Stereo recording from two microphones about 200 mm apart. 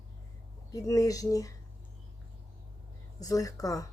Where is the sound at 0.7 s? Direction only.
15° left (ahead or behind).